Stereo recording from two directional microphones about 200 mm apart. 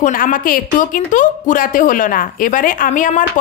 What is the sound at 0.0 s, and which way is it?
A woman's voice, 40° left (ahead or behind).